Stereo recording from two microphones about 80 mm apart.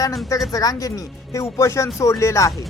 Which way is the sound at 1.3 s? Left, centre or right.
Left.